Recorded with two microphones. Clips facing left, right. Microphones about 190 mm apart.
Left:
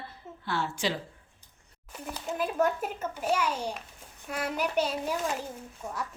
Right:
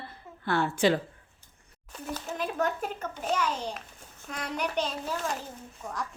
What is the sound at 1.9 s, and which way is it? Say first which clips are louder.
A child's voice: even; 10° left (ahead or behind).